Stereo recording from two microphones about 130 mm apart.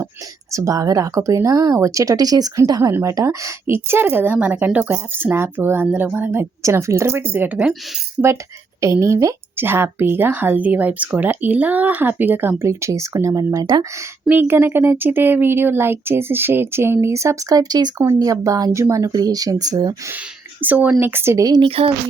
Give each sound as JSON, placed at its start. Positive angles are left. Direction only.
{"t": 0.5, "sound": "speech", "side_deg": -25}
{"t": 8.8, "sound": "speech", "side_deg": -20}
{"t": 14.3, "sound": "speech", "side_deg": -15}
{"t": 20.6, "sound": "speech", "side_deg": -15}
{"t": 21.7, "sound": "speech", "side_deg": -50}